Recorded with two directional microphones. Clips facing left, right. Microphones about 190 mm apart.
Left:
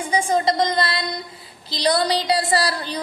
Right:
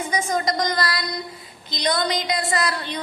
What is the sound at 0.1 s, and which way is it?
A woman's voice, 30° left (ahead or behind).